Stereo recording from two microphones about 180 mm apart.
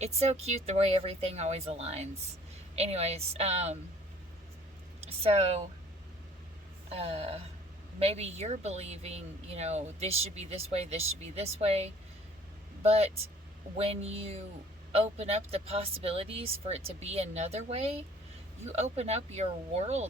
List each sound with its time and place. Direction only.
0.0 s speech: 35° right (ahead or behind)
4.9 s a woman's voice: 35° right (ahead or behind)
6.9 s speech: 35° right (ahead or behind)